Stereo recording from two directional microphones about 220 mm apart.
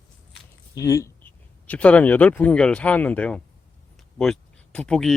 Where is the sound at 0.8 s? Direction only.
15° left (ahead or behind).